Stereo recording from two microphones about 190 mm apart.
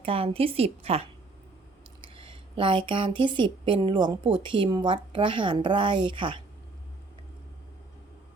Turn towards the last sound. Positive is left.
turn(degrees=-25)  # may be behind; listen again after turning